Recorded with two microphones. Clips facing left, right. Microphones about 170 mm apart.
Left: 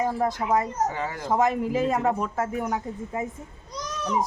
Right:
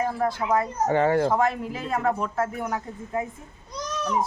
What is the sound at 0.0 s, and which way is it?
Speech, 15° left (ahead or behind).